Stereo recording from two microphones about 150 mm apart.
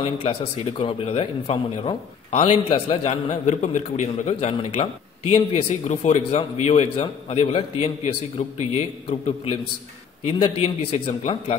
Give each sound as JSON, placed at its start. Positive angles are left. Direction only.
{"t": 0.0, "sound": "a man's voice", "side_deg": 40}
{"t": 10.2, "sound": "a man's voice", "side_deg": 40}